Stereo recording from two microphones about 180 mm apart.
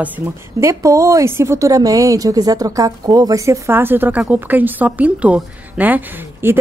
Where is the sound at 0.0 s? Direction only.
10° right (ahead or behind).